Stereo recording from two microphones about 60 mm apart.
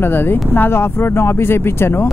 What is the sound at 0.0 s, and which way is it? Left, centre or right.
Speech, left.